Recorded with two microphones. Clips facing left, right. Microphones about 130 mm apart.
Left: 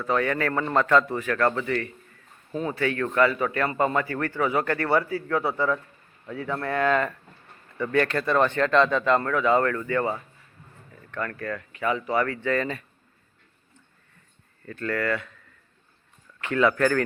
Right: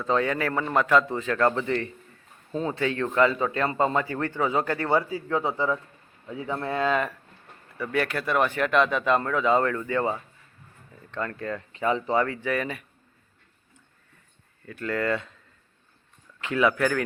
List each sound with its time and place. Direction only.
0.0 s a man's voice: 20° right (ahead or behind)
12.4 s speech: 10° right (ahead or behind)
14.6 s speech: 10° right (ahead or behind)
16.4 s speech: 15° right (ahead or behind)